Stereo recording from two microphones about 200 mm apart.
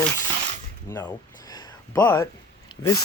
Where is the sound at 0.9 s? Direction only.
15° left (ahead or behind).